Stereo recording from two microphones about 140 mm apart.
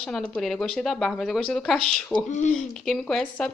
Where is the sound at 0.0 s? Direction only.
5° left (ahead or behind).